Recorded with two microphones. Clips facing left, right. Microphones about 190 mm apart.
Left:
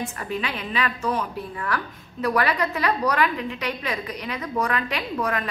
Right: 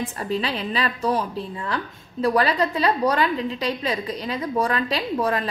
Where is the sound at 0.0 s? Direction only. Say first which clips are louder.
Right 3 dB; 30° right (ahead or behind).